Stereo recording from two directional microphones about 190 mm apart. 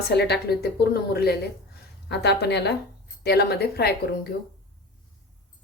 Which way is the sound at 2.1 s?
60° left (ahead or behind).